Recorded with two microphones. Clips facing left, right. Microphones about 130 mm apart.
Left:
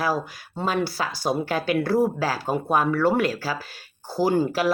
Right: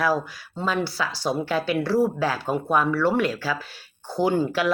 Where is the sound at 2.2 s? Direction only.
40° left (ahead or behind).